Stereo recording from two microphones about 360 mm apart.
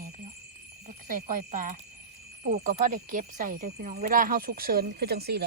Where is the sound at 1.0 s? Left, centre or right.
Right.